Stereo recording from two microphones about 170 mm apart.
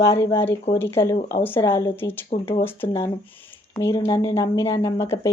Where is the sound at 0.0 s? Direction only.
20° left (ahead or behind).